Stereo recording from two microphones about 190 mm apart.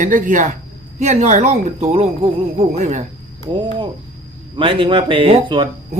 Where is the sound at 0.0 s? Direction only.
40° right (ahead or behind).